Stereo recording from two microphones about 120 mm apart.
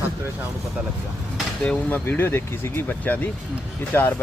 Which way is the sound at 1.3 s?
10° left (ahead or behind).